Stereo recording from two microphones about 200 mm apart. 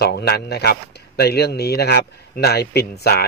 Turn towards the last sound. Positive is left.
turn(degrees=55)  # may be behind; listen again after turning